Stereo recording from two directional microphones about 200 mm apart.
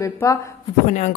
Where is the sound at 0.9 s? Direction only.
40° left (ahead or behind).